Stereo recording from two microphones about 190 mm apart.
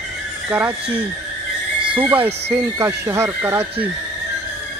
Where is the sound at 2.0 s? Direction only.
10° right (ahead or behind).